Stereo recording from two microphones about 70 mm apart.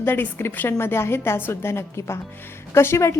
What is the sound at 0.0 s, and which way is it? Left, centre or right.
A woman's voice, left.